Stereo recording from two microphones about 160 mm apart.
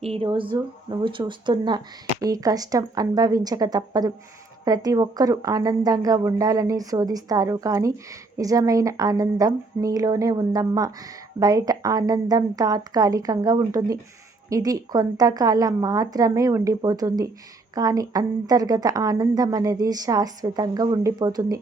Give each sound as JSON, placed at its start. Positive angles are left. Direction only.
{"t": 0.0, "sound": "a woman's voice", "side_deg": -35}